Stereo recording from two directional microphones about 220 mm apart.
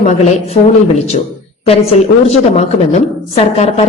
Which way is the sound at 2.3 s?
30° left (ahead or behind).